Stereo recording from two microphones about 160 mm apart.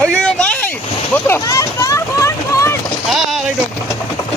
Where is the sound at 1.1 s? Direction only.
15° left (ahead or behind).